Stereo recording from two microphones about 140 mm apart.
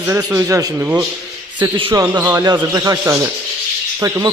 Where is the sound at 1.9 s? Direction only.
25° right (ahead or behind).